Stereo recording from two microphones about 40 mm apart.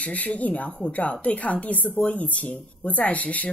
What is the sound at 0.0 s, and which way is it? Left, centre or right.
Speech, left.